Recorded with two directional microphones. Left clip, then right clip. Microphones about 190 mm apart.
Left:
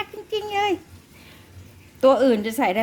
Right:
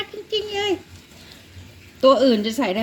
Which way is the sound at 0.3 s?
15° left (ahead or behind).